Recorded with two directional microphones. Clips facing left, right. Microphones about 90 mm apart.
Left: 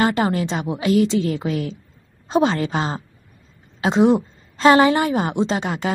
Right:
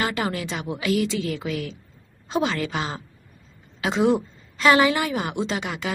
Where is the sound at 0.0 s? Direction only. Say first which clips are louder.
Left 7 dB; 35° left (ahead or behind).